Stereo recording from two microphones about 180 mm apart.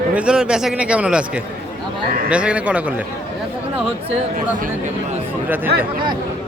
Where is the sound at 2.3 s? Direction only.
5° right (ahead or behind).